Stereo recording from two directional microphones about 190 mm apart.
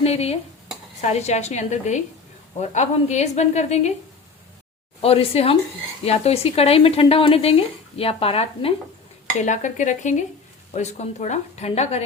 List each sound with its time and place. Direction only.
0.0 s speech: 35° left (ahead or behind)
5.0 s speech: 30° left (ahead or behind)